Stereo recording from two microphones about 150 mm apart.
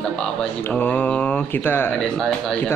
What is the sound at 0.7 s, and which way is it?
Speech, 10° left (ahead or behind).